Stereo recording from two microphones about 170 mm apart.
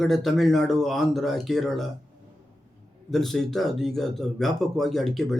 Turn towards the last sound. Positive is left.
turn(degrees=0)  # may be behind; listen again after turning